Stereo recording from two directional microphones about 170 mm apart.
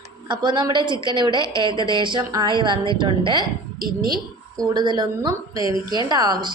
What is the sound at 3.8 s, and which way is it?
Speech, 60° right (ahead or behind).